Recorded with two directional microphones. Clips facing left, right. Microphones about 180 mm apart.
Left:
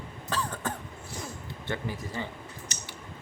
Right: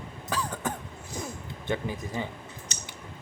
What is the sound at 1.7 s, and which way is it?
Speech, 15° right (ahead or behind).